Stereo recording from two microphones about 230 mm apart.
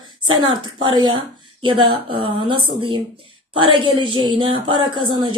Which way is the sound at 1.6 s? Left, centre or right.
Right.